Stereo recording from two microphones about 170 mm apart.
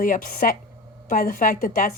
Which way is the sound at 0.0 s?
55° left (ahead or behind).